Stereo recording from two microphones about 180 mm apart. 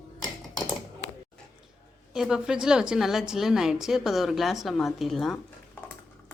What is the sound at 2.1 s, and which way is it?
A woman's voice, 5° right (ahead or behind).